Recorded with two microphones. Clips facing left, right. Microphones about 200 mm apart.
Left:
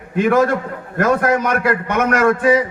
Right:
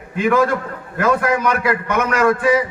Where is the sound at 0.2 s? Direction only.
50° left (ahead or behind).